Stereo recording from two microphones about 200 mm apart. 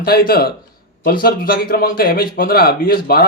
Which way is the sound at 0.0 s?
50° left (ahead or behind).